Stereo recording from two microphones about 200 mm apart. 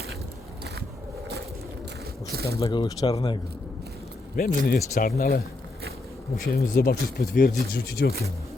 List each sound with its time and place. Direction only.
2.3 s speech: 50° right (ahead or behind)
2.6 s speech: 20° left (ahead or behind)
4.4 s speech: 50° left (ahead or behind)
6.4 s speech: 50° left (ahead or behind)